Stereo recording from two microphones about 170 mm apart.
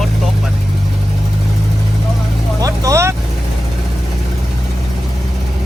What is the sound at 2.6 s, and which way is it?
Vehicle, 20° right (ahead or behind).